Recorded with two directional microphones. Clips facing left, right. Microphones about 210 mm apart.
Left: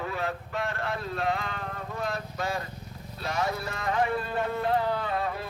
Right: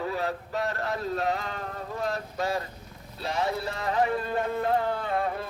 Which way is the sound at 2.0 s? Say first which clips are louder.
Right 2 dB; 35° right (ahead or behind).